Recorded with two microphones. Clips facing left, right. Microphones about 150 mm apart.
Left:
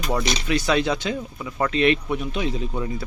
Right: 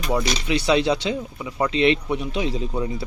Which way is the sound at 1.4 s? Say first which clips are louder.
Even; 15° right (ahead or behind).